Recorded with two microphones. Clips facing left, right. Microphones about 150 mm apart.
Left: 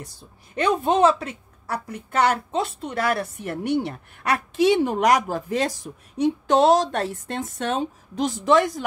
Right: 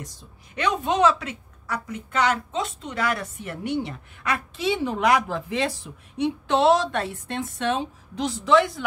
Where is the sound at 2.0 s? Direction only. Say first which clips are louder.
Left 3 dB; 60° left (ahead or behind).